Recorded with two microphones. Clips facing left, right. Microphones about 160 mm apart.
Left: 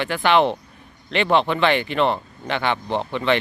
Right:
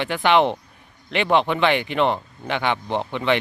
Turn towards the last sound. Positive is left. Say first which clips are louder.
# left 1 dB
turn(degrees=-15)  # may be behind; listen again after turning